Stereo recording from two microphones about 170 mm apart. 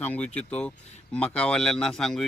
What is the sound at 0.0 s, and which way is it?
A man's voice, 10° left (ahead or behind).